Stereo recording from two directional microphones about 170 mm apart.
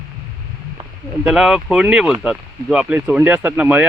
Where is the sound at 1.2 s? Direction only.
5° right (ahead or behind).